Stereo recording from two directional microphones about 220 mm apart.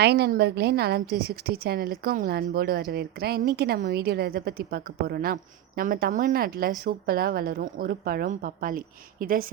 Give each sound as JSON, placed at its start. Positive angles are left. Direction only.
{"t": 0.0, "sound": "a woman's voice", "side_deg": -50}